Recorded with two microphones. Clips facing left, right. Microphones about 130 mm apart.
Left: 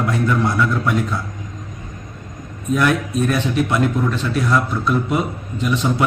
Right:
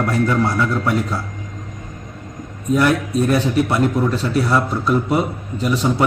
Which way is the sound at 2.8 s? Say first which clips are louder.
Right 2 dB; 35° right (ahead or behind).